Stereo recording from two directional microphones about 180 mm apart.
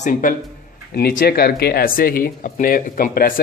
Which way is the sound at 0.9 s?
60° left (ahead or behind).